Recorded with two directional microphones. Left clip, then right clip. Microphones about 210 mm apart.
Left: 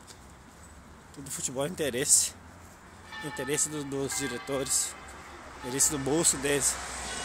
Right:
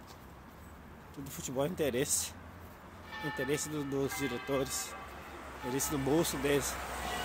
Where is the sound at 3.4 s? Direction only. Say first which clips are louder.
Left 4 dB; 10° left (ahead or behind).